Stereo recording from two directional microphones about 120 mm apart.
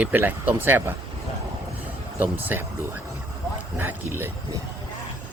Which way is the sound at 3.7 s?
15° right (ahead or behind).